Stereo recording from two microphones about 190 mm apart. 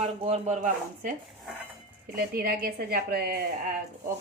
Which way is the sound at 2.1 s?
50° right (ahead or behind).